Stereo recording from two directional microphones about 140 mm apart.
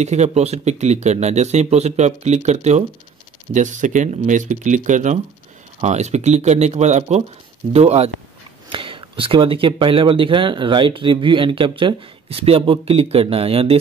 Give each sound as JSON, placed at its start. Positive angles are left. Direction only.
{"t": 0.0, "sound": "speech", "side_deg": -55}
{"t": 3.5, "sound": "speech", "side_deg": -65}
{"t": 8.6, "sound": "speech", "side_deg": -40}